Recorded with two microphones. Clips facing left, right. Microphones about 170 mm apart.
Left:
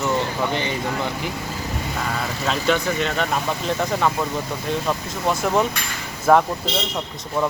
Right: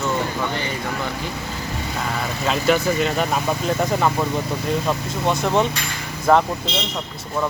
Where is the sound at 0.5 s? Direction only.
20° left (ahead or behind).